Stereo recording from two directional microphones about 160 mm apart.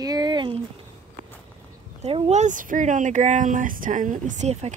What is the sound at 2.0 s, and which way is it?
Speech, 40° right (ahead or behind).